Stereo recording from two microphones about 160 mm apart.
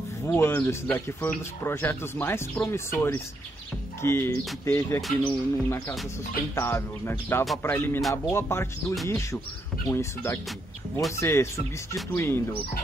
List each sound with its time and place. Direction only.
0.2 s speech: 15° left (ahead or behind)